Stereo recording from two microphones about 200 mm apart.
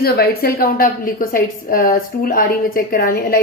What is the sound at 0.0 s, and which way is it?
A woman's voice, 50° left (ahead or behind).